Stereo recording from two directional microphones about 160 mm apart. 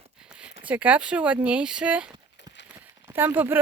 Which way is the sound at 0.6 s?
10° right (ahead or behind).